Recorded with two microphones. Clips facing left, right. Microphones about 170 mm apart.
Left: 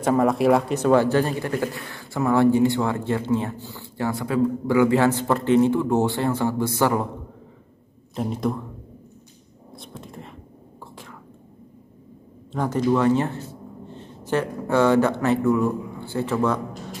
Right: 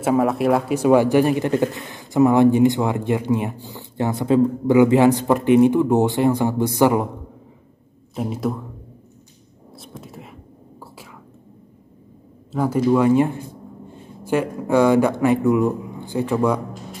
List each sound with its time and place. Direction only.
0.0 s speech: 5° right (ahead or behind)
8.1 s speech: 5° right (ahead or behind)
9.8 s whispering: 5° right (ahead or behind)
12.5 s speech: 10° right (ahead or behind)